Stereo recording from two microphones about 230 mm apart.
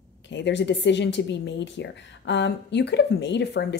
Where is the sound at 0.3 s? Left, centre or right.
Left.